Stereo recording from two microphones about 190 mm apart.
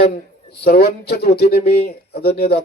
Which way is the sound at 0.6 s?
55° left (ahead or behind).